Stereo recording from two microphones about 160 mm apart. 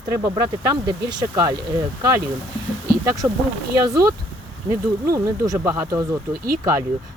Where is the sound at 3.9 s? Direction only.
20° right (ahead or behind).